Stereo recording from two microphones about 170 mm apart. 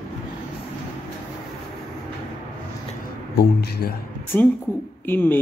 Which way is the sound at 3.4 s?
70° left (ahead or behind).